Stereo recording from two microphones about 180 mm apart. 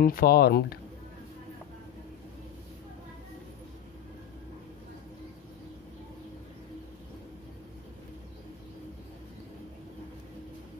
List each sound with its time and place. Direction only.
0.0 s speech: 55° left (ahead or behind)